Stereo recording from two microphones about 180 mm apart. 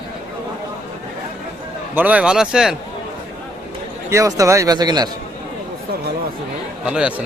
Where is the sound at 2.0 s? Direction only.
10° right (ahead or behind).